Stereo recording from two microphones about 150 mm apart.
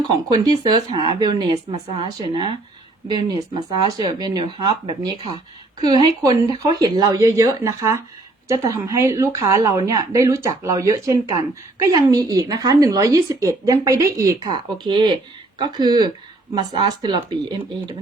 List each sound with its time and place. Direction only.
0.3 s a woman's voice: 30° right (ahead or behind)
1.7 s a woman's voice: 40° right (ahead or behind)